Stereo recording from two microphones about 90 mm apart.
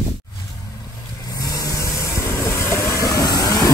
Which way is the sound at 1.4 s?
40° left (ahead or behind).